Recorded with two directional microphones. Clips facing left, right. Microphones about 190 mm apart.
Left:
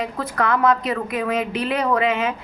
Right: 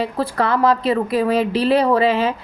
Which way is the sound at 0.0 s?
30° right (ahead or behind).